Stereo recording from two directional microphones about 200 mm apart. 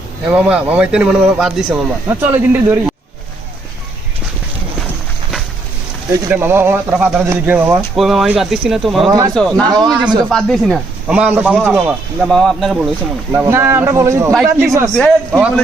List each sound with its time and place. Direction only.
0.3 s a man's voice: 5° right (ahead or behind)
6.1 s a man's voice: 10° right (ahead or behind)
9.0 s a man's voice: 20° right (ahead or behind)
9.3 s a man's voice: 5° left (ahead or behind)
9.6 s a man's voice: 20° right (ahead or behind)
10.2 s a man's voice: centre (ahead or behind)
13.3 s a man's voice: 15° right (ahead or behind)